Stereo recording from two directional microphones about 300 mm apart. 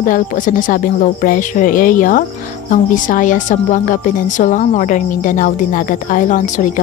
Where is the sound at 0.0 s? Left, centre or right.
Left.